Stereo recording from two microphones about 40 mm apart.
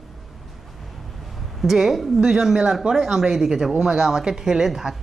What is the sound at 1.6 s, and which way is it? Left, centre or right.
A woman's voice, centre.